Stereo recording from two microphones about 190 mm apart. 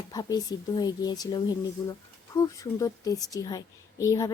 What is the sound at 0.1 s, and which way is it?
Speech, 20° left (ahead or behind).